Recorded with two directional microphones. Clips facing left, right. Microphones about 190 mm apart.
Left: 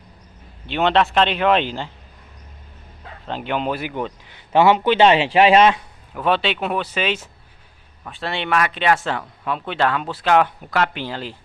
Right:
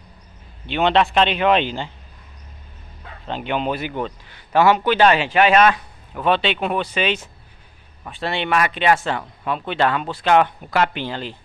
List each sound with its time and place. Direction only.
0.7 s speech: centre (ahead or behind)
3.3 s a man's voice: centre (ahead or behind); by 5.8 s 25° left (ahead or behind)
6.1 s speech: centre (ahead or behind)